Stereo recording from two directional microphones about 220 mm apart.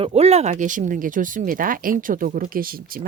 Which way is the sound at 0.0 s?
30° right (ahead or behind).